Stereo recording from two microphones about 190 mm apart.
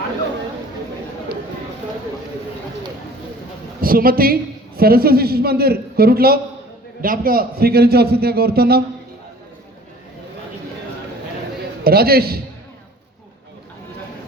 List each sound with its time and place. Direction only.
3.8 s a man's voice: 50° right (ahead or behind)
11.8 s a man's voice: 55° right (ahead or behind)